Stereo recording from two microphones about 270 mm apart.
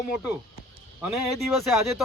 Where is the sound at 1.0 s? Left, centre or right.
Centre.